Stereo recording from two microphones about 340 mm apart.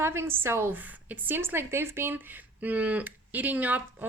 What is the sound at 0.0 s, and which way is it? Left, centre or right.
A woman's voice, centre.